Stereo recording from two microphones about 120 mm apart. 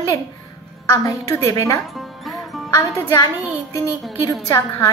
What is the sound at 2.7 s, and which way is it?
Speech, 30° left (ahead or behind).